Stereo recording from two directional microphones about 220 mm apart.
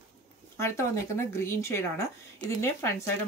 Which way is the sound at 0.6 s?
10° left (ahead or behind).